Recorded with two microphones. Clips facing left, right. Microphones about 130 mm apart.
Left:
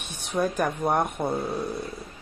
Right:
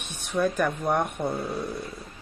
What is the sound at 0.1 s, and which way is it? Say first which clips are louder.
Speech: right 1 dB; 10° left (ahead or behind).